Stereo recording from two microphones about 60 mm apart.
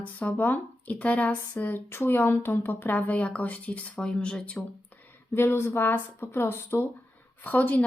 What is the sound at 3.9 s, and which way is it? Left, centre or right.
Speech, centre.